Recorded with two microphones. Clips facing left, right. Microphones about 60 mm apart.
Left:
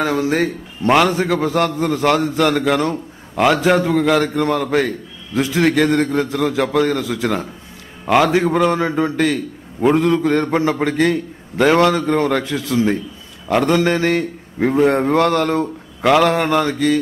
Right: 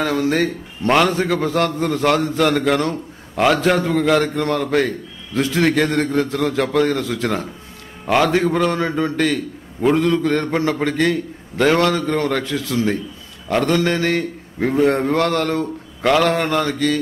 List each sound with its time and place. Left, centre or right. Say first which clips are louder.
0.0 s a man's voice: left 1 dB; centre